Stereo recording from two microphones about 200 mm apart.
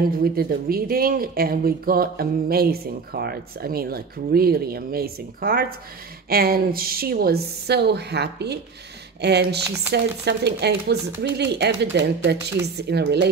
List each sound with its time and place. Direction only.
0.1 s speech: 50° right (ahead or behind)